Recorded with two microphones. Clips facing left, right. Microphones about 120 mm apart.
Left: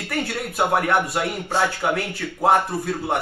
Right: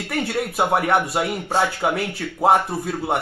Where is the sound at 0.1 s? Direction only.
Centre (ahead or behind).